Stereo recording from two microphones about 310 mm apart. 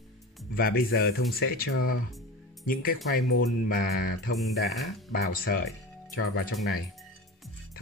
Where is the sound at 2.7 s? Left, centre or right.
Left.